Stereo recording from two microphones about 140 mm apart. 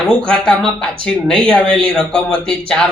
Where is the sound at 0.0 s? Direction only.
10° left (ahead or behind).